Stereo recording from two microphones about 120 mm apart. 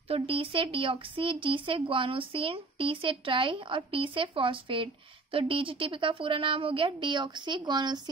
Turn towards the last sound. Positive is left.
turn(degrees=-40)  # may be behind; listen again after turning